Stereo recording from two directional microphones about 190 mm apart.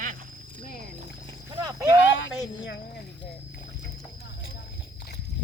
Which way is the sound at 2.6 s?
60° left (ahead or behind).